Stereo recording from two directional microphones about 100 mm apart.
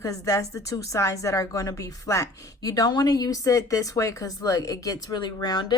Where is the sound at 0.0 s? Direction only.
30° left (ahead or behind).